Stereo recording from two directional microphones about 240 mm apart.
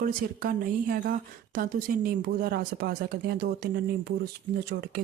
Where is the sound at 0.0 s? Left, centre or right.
Right.